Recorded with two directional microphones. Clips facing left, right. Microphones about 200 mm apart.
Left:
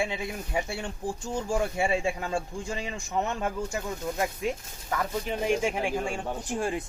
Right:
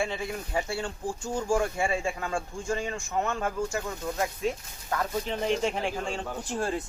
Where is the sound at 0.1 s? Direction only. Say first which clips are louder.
Even; 15° left (ahead or behind).